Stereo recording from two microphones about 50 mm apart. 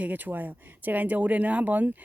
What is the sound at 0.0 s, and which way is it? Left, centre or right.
Speech, right.